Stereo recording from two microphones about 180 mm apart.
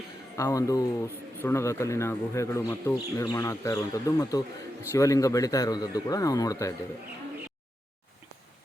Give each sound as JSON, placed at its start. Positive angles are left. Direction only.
{"t": 0.3, "sound": "a man's voice", "side_deg": 20}